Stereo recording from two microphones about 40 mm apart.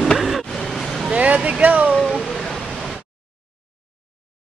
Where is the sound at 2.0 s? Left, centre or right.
Centre.